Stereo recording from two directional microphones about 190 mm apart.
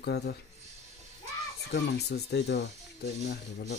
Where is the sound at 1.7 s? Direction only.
70° left (ahead or behind).